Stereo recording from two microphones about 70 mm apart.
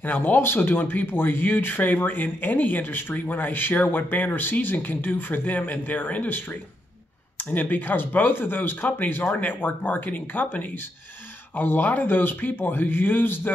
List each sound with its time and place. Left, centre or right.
0.0 s speech: left